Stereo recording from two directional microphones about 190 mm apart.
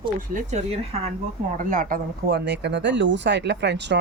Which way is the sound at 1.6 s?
45° right (ahead or behind).